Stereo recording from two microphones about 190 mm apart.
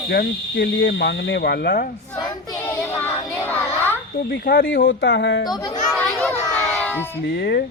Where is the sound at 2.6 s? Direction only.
10° left (ahead or behind).